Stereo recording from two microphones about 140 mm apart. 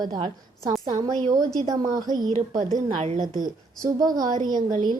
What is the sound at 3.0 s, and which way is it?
Speech, 65° right (ahead or behind).